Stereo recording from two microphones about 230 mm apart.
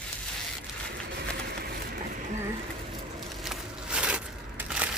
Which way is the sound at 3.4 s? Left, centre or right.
Centre.